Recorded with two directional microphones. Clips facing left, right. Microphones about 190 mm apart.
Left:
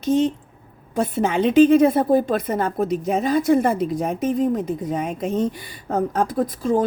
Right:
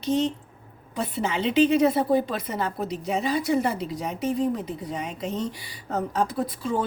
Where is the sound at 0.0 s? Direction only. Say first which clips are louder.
Left 5 dB; 50° left (ahead or behind).